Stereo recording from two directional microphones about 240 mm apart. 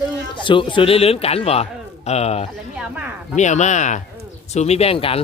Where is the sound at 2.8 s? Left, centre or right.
Centre.